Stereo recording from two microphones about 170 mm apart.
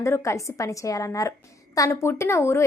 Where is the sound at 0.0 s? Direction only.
15° left (ahead or behind).